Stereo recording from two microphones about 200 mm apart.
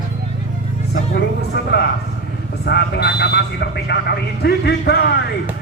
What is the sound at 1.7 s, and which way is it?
A man's voice, 55° left (ahead or behind).